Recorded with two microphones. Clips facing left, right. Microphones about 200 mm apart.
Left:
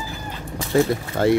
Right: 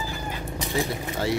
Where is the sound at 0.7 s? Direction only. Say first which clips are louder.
Left 9 dB; 55° left (ahead or behind).